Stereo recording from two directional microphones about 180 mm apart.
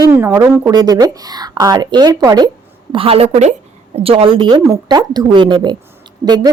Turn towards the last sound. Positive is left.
turn(degrees=-25)  # may be behind; listen again after turning